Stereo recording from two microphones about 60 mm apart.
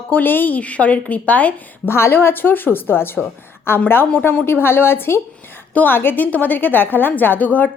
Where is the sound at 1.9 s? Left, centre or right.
Left.